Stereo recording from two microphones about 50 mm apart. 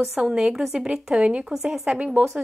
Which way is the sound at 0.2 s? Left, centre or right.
Centre.